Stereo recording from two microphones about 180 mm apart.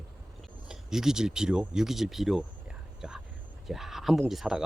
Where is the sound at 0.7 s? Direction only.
5° right (ahead or behind).